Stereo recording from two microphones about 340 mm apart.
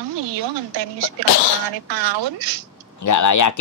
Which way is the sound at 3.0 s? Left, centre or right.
Left.